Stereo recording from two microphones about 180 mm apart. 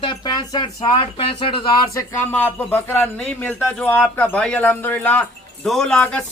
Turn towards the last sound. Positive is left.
turn(degrees=5)  # may be behind; listen again after turning